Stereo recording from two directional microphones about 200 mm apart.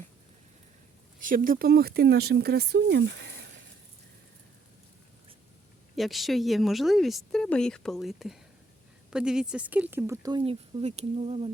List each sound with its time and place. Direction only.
1.2 s speech: 45° right (ahead or behind); by 3.6 s 60° right (ahead or behind)
6.0 s speech: centre (ahead or behind); by 10.4 s 15° right (ahead or behind)
10.4 s speech: 30° right (ahead or behind)